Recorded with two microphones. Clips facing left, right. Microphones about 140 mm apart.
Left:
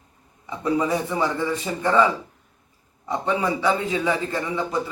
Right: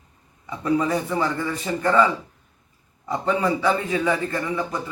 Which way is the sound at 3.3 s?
15° left (ahead or behind).